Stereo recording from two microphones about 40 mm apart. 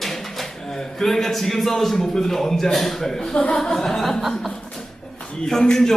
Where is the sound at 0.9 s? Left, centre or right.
Centre.